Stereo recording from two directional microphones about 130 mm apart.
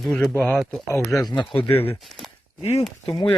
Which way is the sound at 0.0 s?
Centre (ahead or behind).